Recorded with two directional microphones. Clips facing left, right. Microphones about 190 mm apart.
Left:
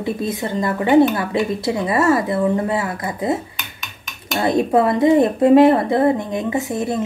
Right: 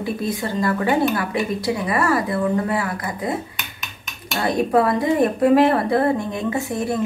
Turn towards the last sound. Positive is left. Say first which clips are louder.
# left 2 dB
turn(degrees=20)  # may be behind; listen again after turning